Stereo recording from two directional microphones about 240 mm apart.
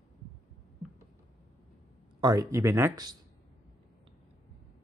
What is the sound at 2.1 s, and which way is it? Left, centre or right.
Speech, centre.